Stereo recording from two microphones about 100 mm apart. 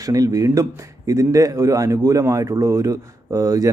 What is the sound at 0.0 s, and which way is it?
Speech, 35° right (ahead or behind).